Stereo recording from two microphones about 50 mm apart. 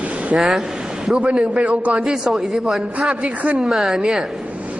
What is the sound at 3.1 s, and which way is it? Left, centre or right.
Speech, centre.